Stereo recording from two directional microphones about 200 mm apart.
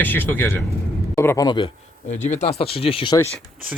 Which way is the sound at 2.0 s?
35° left (ahead or behind).